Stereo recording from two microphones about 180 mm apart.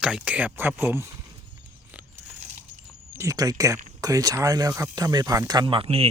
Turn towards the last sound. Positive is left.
turn(degrees=-35)  # may be behind; listen again after turning